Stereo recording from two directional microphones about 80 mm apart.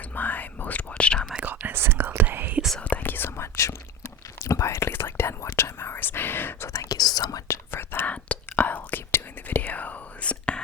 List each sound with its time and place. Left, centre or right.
0.2 s whispering: left
1.5 s whispering: right
2.7 s whispering: centre
6.7 s whispering: left
7.4 s whispering: left
8.1 s whispering: centre